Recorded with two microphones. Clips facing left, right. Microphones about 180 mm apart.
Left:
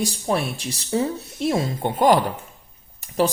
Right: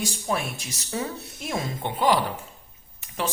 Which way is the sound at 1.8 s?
45° left (ahead or behind).